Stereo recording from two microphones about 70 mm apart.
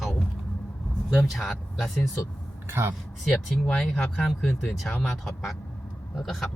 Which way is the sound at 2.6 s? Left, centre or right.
Right.